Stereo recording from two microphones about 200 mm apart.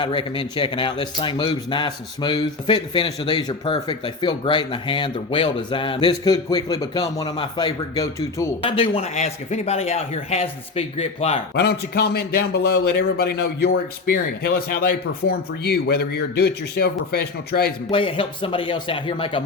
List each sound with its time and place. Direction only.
0.0 s speech: 25° left (ahead or behind)
8.6 s speech: 25° left (ahead or behind)
11.5 s speech: 55° left (ahead or behind)
17.9 s speech: 25° left (ahead or behind)